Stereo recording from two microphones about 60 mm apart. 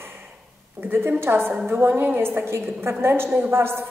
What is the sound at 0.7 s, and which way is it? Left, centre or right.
A woman's voice, right.